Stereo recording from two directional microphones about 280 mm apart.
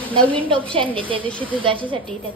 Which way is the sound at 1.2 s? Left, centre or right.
Centre.